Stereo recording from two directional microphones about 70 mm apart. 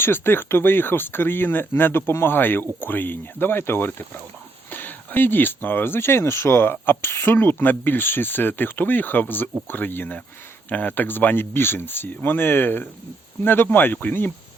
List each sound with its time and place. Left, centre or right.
0.0 s speech: left